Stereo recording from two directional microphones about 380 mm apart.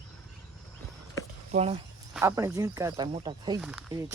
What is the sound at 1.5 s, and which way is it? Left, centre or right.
Speech, centre.